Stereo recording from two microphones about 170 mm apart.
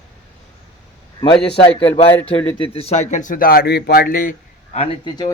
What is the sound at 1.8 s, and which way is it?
Speech, 30° left (ahead or behind).